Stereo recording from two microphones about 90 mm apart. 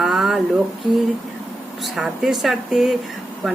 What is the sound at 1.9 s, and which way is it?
Speech, 5° right (ahead or behind).